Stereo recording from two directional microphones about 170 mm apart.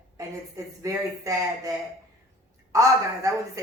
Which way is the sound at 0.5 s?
20° right (ahead or behind).